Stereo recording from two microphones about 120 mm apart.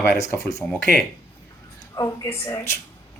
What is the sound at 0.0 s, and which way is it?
Speech, 25° left (ahead or behind).